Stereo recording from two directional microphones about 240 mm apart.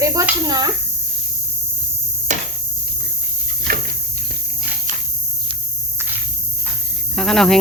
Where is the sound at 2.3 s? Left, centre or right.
Right.